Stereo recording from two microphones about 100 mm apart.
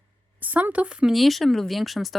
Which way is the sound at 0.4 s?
15° right (ahead or behind).